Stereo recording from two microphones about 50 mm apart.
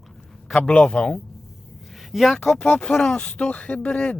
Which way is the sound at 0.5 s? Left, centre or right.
Centre.